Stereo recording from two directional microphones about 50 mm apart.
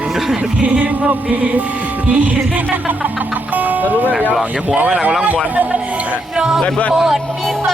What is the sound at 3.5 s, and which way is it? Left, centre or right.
Music, right.